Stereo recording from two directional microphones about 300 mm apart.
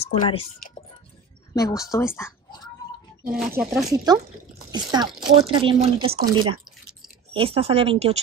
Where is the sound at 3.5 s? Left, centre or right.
Centre.